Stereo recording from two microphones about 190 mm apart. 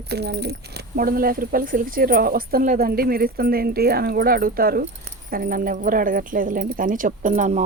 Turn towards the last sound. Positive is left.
turn(degrees=-40)  # may be behind; listen again after turning